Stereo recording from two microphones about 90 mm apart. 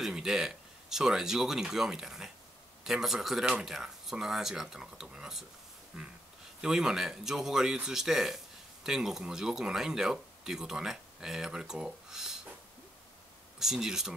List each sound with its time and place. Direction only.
0.0 s speech: 5° right (ahead or behind)
5.9 s a sound: 10° right (ahead or behind)
6.6 s speech: 5° right (ahead or behind)
13.6 s speech: 5° right (ahead or behind)